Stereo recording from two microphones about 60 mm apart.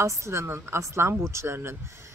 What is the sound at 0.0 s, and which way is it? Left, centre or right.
Speech, right.